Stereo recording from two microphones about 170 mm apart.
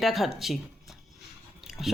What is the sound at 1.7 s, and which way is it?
Chewing, 5° right (ahead or behind).